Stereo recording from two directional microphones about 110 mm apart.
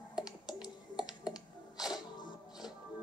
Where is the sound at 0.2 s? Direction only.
5° right (ahead or behind).